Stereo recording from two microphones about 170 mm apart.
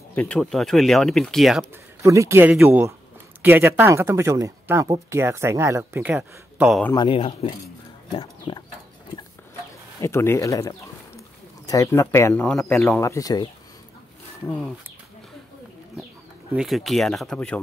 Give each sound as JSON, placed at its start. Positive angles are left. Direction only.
{"t": 0.1, "sound": "speech", "side_deg": 5}
{"t": 2.0, "sound": "speech", "side_deg": -15}
{"t": 7.0, "sound": "speech", "side_deg": 30}
{"t": 9.9, "sound": "speech", "side_deg": 15}
{"t": 12.4, "sound": "speech", "side_deg": 5}
{"t": 13.0, "sound": "speech", "side_deg": 20}
{"t": 16.5, "sound": "speech", "side_deg": 0}